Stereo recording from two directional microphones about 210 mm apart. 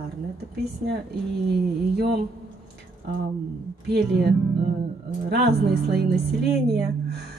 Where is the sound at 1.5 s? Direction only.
50° right (ahead or behind).